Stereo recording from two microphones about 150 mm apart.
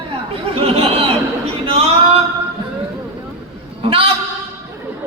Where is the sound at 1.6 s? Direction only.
40° right (ahead or behind).